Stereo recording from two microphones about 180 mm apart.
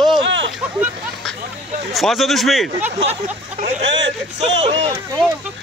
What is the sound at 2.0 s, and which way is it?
Speech, centre (ahead or behind).